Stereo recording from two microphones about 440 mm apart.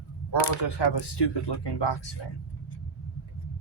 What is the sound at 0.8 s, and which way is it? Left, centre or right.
Speech, left.